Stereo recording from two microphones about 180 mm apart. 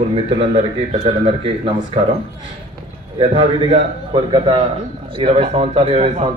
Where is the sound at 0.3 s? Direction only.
35° right (ahead or behind).